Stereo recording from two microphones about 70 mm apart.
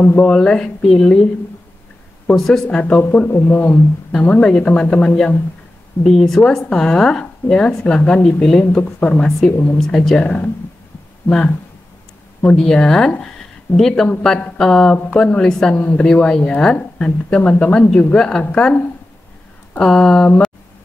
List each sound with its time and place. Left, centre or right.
0.0 s speech: left
2.3 s speech: centre; by 3.8 s left
4.2 s a woman's voice: centre
8.8 s speech: left
9.8 s speech: centre
10.2 s speech: centre
15.7 s speech: left
16.1 s speech: centre
19.8 s speech: centre